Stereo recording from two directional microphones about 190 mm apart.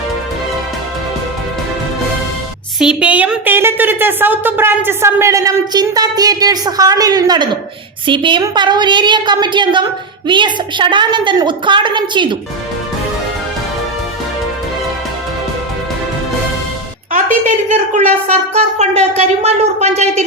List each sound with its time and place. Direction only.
2.7 s a woman's voice: 5° right (ahead or behind); by 12.4 s 25° right (ahead or behind)
17.1 s a sound: 45° right (ahead or behind)
18.5 s speech: 35° right (ahead or behind)